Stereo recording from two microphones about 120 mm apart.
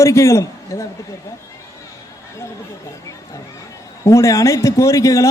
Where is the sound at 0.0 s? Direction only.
25° left (ahead or behind).